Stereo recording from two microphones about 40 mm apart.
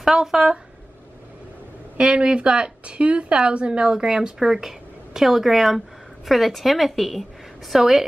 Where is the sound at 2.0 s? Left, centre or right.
Right.